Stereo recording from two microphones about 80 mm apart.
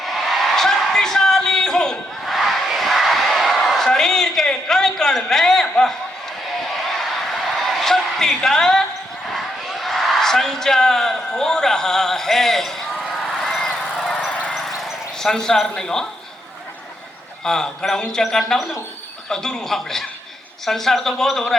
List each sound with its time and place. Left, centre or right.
0.0 s a sound: centre
14.3 s horse: centre
14.8 s a man's voice: centre
17.4 s a man's voice: centre